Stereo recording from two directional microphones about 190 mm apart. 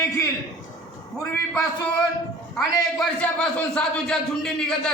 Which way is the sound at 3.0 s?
5° left (ahead or behind).